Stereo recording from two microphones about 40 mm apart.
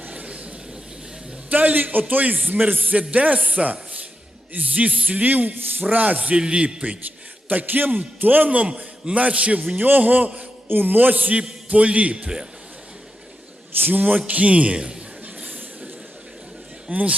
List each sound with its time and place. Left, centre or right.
0.1 s a sound: right
1.5 s a man's voice: right
2.9 s speech: right
7.4 s a man's voice: right
8.4 s a man's voice: right
9.7 s a man's voice: right
10.7 s a man's voice: right
13.7 s a man's voice: right
14.8 s a man's voice: right
15.2 s train: right
16.9 s speech: right